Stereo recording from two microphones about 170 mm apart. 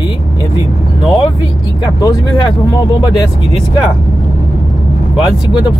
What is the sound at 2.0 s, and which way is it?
Speech, 25° left (ahead or behind).